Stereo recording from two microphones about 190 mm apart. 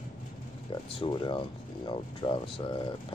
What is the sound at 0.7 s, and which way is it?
Speech, 25° left (ahead or behind).